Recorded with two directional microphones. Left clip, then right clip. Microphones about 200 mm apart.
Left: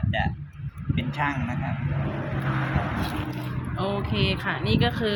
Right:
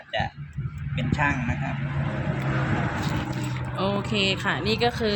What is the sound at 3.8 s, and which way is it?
Speech, 10° right (ahead or behind).